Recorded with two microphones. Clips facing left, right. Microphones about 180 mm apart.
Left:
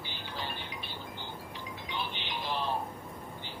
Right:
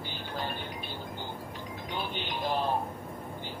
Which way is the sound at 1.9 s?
45° right (ahead or behind).